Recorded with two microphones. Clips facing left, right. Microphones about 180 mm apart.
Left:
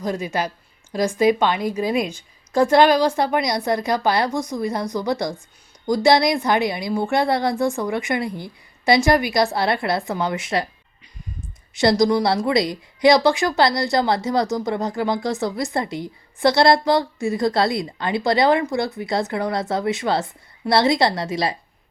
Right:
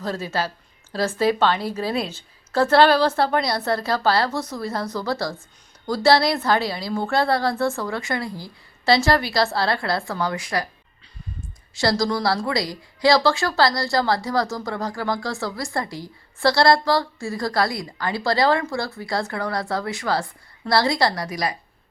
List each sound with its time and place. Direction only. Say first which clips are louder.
0.0 s a woman's voice: left 2 dB; 15° left (ahead or behind)
11.7 s speech: left 5 dB; 20° left (ahead or behind)